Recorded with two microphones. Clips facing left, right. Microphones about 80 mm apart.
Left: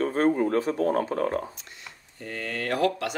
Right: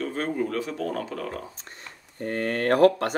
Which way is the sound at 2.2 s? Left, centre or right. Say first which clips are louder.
Right 6 dB; right.